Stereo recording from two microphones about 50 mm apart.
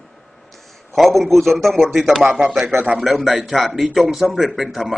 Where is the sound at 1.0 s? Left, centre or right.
Centre.